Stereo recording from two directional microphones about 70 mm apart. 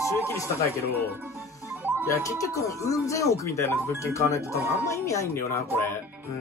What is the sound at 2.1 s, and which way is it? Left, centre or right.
Speech, left.